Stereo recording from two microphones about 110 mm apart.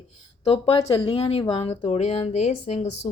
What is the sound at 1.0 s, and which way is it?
Speech, 60° left (ahead or behind).